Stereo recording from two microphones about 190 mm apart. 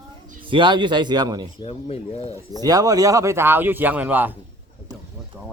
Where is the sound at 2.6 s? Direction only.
20° right (ahead or behind).